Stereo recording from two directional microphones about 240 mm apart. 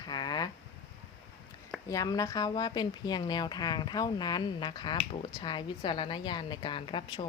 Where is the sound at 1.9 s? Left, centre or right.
Centre.